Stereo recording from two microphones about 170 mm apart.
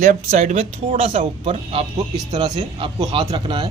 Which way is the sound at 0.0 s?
50° right (ahead or behind).